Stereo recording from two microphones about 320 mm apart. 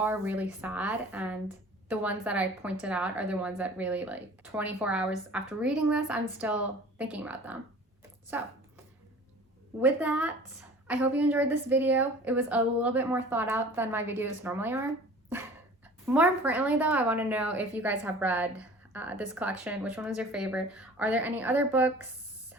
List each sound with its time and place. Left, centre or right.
0.0 s a woman's voice: centre
9.8 s a woman's voice: centre
16.0 s a woman's voice: centre